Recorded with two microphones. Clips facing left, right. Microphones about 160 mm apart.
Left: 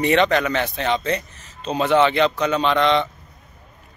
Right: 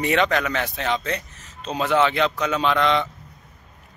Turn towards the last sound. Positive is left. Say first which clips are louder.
# left 2 dB
turn(degrees=-5)  # may be behind; listen again after turning